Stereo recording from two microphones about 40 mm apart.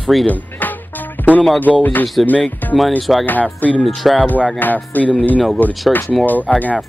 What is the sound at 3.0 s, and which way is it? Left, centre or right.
Speech, centre.